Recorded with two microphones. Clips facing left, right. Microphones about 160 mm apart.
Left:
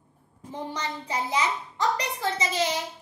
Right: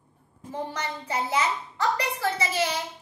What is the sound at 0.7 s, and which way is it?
Speech, 15° left (ahead or behind).